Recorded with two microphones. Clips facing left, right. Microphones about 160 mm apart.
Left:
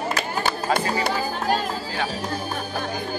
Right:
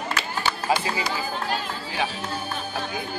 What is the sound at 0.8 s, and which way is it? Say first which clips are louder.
Music: left 4 dB; 50° left (ahead or behind).